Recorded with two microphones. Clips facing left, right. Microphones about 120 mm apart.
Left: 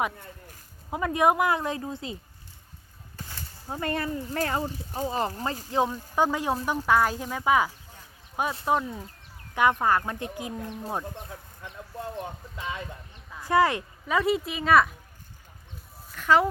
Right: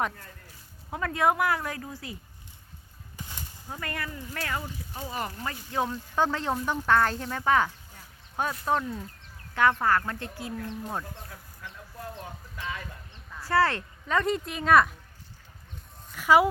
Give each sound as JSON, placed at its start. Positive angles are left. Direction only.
{"t": 0.9, "sound": "speech", "side_deg": 20}
{"t": 3.2, "sound": "a sound", "side_deg": -15}
{"t": 3.7, "sound": "speech", "side_deg": 30}
{"t": 5.7, "sound": "speech", "side_deg": 15}
{"t": 16.1, "sound": "speech", "side_deg": -10}